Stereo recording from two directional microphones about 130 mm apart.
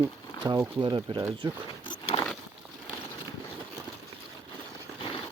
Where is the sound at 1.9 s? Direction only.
35° left (ahead or behind).